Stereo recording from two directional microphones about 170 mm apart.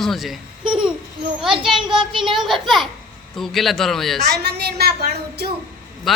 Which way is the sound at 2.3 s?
Centre (ahead or behind).